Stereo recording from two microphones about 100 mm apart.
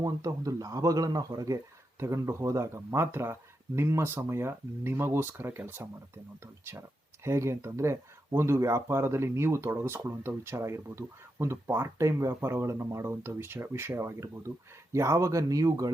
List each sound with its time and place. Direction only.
0.0 s speech: 35° right (ahead or behind); by 5.9 s 20° right (ahead or behind)
7.3 s speech: 30° right (ahead or behind)